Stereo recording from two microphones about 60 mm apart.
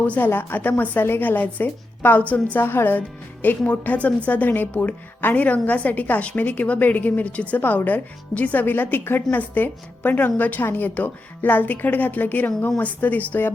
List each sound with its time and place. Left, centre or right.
0.0 s a woman's voice: left
0.3 s a woman's voice: left